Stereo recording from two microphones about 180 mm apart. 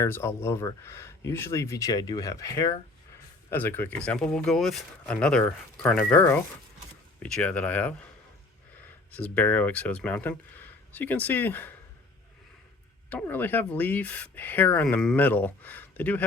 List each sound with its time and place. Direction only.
0.0 s speech: 15° left (ahead or behind)
9.1 s speech: 10° left (ahead or behind)
13.1 s speech: 10° left (ahead or behind)